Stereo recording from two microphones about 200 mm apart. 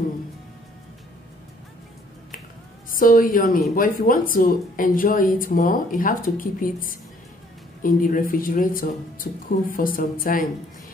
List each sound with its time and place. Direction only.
2.9 s a woman's voice: 45° left (ahead or behind)